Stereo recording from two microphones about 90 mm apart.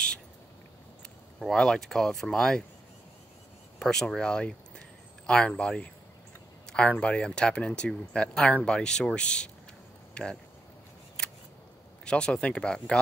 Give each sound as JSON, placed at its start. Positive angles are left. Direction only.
{"t": 1.4, "sound": "speech", "side_deg": 5}
{"t": 3.8, "sound": "speech", "side_deg": 5}
{"t": 12.0, "sound": "speech", "side_deg": 10}